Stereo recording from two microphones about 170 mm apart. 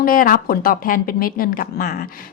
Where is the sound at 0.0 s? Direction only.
55° left (ahead or behind).